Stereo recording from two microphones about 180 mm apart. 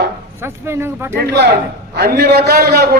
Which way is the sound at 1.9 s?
65° right (ahead or behind).